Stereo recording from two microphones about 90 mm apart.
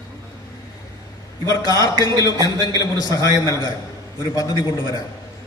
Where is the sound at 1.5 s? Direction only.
45° right (ahead or behind).